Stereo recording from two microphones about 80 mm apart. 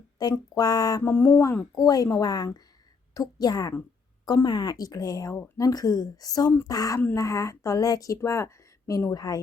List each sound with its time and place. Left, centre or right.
0.2 s speech: left
1.0 s speech: left
1.7 s speech: left
4.4 s speech: left
9.1 s speech: left